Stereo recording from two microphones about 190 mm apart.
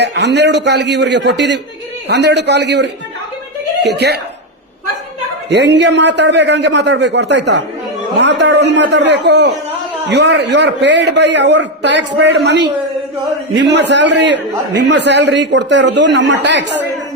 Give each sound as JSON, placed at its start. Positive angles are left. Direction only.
{"t": 0.0, "sound": "a man's voice", "side_deg": -65}
{"t": 5.5, "sound": "a man's voice", "side_deg": -65}